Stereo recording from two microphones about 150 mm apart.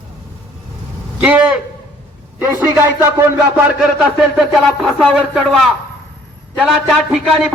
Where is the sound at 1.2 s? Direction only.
10° right (ahead or behind).